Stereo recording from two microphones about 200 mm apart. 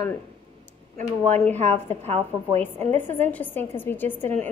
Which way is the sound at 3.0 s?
10° left (ahead or behind).